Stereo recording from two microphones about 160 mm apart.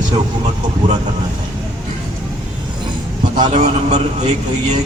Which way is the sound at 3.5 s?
45° right (ahead or behind).